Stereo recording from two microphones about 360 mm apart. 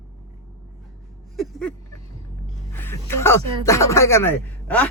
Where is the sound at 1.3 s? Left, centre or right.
Centre.